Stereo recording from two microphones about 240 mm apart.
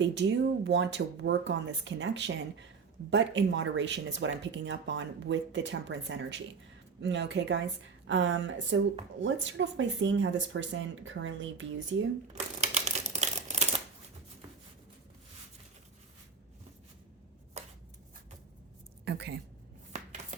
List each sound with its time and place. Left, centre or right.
0.0 s speech: right
12.3 s a sound: right
19.0 s speech: right
19.9 s chopping: right